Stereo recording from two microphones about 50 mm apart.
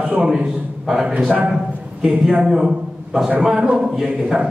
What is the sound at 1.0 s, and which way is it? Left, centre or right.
A man's voice, centre.